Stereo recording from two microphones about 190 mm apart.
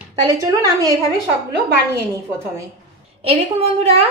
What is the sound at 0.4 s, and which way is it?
Speech, 20° right (ahead or behind).